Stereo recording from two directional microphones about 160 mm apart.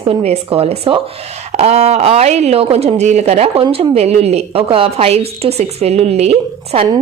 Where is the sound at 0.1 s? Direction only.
40° right (ahead or behind).